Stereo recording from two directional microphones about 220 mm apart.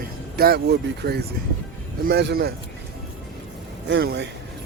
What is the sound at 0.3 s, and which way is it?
Speech, 45° right (ahead or behind).